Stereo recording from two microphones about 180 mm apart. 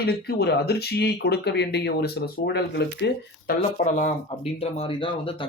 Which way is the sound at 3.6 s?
40° left (ahead or behind).